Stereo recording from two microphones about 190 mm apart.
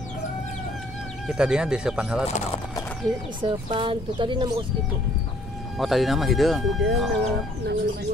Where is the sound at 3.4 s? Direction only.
25° right (ahead or behind).